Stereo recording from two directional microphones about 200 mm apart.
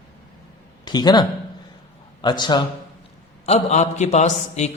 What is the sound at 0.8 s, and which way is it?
A man's voice, 20° left (ahead or behind).